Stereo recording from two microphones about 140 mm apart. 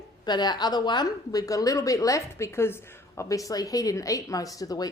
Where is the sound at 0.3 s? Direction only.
30° left (ahead or behind).